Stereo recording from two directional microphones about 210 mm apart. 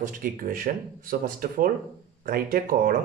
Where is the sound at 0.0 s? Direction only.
40° right (ahead or behind).